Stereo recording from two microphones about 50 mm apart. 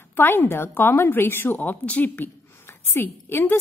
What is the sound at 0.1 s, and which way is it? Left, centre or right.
A woman's voice, left.